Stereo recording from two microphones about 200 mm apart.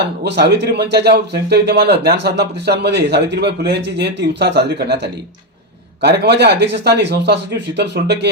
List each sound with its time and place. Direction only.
0.3 s speech: 60° right (ahead or behind)